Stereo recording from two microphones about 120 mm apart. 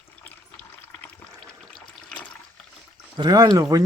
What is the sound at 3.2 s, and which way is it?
Speech, 35° right (ahead or behind).